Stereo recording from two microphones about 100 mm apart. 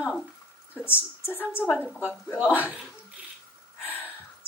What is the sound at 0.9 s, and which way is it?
Speech, 20° left (ahead or behind).